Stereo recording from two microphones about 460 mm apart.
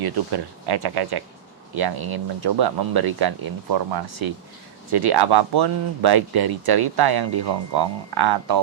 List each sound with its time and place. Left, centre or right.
0.0 s speech: right